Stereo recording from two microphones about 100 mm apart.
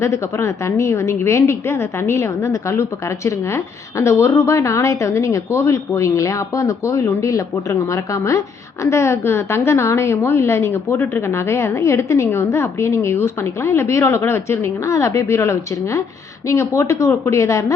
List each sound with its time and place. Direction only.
0.0 s a woman's voice: 30° left (ahead or behind)